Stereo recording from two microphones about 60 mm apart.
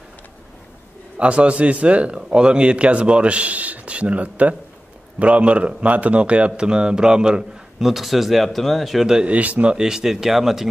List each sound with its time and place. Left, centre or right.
1.1 s a man's voice: centre
9.0 s a man's voice: centre
9.3 s a man's voice: right; by 10.7 s centre